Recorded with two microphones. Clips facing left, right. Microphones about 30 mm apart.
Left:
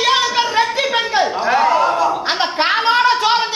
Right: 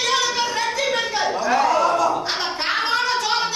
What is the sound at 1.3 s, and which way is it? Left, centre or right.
Speech, left.